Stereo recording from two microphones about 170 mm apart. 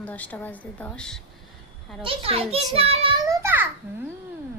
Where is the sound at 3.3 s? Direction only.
15° right (ahead or behind).